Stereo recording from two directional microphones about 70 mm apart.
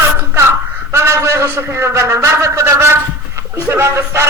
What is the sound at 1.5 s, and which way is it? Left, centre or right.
A man's voice, right.